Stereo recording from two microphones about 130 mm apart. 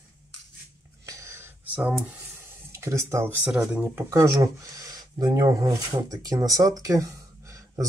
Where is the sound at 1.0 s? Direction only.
20° right (ahead or behind).